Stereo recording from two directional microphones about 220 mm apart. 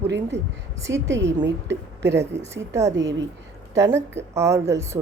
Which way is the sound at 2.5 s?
15° right (ahead or behind).